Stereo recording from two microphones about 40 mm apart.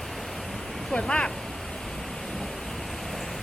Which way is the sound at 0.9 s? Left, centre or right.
Left.